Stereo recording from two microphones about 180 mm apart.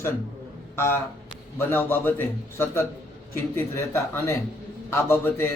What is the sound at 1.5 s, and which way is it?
A man's voice, 10° left (ahead or behind).